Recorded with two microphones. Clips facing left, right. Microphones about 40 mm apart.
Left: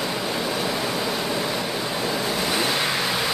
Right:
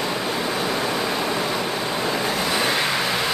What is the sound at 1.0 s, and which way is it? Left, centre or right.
Vehicle, right.